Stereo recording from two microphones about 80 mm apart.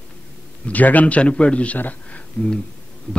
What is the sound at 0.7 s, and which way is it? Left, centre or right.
A man's voice, centre.